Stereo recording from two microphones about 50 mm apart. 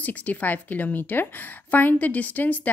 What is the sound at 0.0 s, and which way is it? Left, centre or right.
A woman's voice, left.